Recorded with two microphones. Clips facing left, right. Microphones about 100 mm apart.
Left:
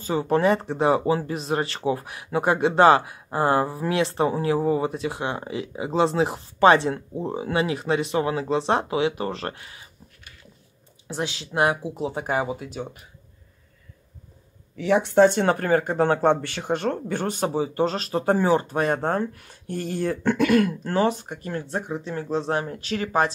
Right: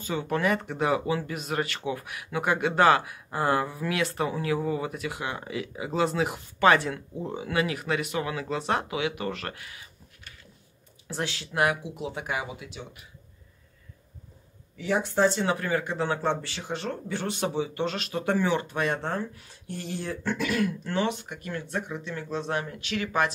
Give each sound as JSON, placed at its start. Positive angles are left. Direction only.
{"t": 0.0, "sound": "speech", "side_deg": 35}
{"t": 11.1, "sound": "speech", "side_deg": 20}
{"t": 14.8, "sound": "speech", "side_deg": 75}